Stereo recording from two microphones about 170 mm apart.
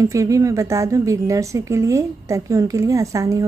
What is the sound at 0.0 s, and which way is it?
A woman's voice, 20° right (ahead or behind).